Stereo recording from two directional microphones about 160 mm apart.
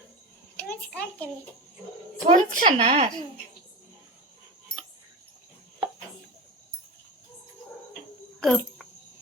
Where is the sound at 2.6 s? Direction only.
35° right (ahead or behind).